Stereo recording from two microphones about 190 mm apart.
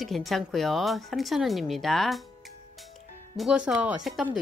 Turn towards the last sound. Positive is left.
turn(degrees=0)  # may be behind; listen again after turning